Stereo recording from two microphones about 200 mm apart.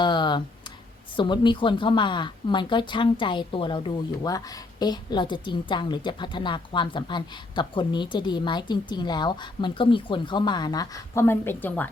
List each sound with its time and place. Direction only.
0.0 s clicking: 20° left (ahead or behind)
1.1 s speech: 25° left (ahead or behind)